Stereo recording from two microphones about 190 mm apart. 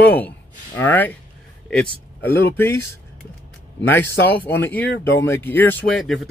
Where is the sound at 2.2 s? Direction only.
10° left (ahead or behind).